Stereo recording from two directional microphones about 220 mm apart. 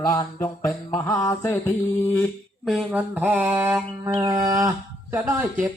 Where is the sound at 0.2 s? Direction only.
15° left (ahead or behind).